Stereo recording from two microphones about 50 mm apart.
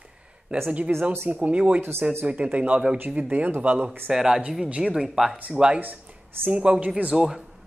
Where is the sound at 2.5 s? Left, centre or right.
Right.